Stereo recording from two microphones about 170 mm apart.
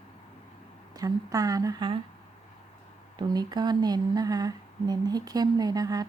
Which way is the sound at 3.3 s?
25° right (ahead or behind).